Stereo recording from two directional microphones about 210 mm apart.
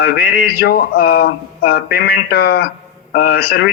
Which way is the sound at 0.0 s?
45° left (ahead or behind).